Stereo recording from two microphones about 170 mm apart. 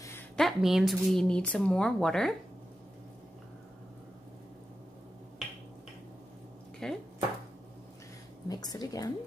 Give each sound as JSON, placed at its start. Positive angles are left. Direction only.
{"t": 0.4, "sound": "a woman's voice", "side_deg": 0}
{"t": 6.8, "sound": "dishes", "side_deg": 5}
{"t": 8.5, "sound": "a woman's voice", "side_deg": 25}